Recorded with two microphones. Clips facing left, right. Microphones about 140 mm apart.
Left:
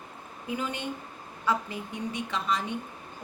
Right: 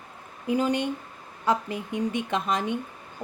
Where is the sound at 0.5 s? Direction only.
40° right (ahead or behind).